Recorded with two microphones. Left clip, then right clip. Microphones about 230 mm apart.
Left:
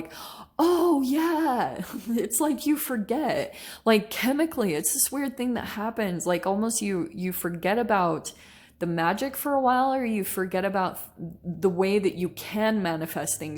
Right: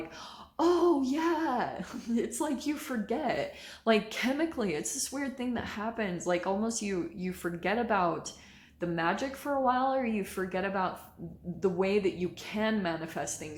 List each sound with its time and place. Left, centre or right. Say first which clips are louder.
0.5 s speech: left 4 dB; left